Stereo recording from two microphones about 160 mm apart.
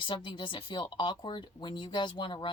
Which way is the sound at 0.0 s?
30° left (ahead or behind).